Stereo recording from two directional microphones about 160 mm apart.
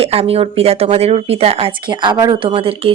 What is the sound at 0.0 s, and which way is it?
Speech, 40° right (ahead or behind).